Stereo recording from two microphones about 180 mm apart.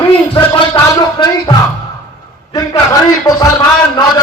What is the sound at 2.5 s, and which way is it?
Speech, 20° left (ahead or behind).